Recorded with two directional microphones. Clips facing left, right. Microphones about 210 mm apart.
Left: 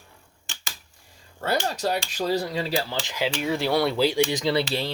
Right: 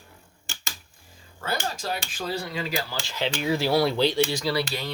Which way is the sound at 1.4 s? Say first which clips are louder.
Left 5 dB; 40° left (ahead or behind).